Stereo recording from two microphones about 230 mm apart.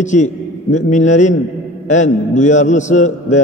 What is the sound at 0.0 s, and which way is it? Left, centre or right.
A man's voice, left.